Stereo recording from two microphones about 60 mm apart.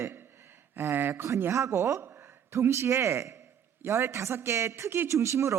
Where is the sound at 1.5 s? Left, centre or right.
Right.